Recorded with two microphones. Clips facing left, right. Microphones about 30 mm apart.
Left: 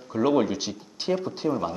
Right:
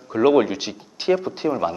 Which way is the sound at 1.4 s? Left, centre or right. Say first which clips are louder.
Right 3 dB; right.